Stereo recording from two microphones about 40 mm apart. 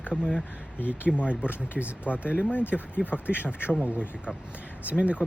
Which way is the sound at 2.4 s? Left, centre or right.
Left.